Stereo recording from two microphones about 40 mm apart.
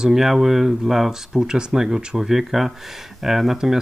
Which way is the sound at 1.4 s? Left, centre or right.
Centre.